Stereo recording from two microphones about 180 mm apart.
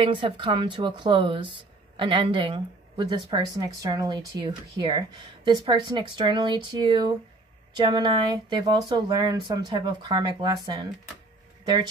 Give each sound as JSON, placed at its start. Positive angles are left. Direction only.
{"t": 0.0, "sound": "speech", "side_deg": -25}